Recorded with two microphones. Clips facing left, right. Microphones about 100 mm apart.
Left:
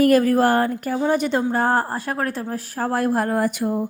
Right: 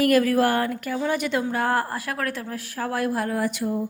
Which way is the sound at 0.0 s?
35° left (ahead or behind).